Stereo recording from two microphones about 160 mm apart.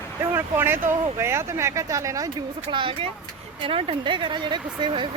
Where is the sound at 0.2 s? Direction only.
15° right (ahead or behind).